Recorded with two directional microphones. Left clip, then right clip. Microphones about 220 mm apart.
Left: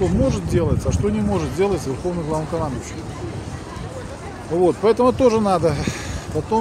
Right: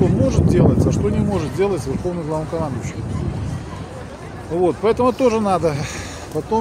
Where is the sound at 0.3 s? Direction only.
Centre (ahead or behind).